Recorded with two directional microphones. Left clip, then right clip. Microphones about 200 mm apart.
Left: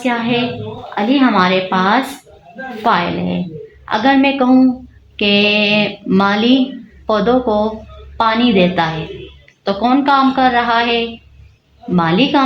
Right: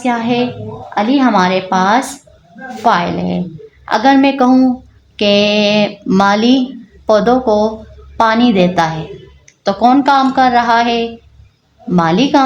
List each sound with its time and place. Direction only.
0.0 s speech: 60° right (ahead or behind)